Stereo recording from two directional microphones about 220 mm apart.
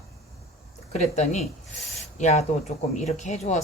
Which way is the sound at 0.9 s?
30° left (ahead or behind).